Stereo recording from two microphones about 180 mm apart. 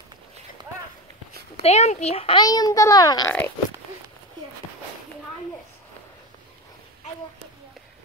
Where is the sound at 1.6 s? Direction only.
40° left (ahead or behind).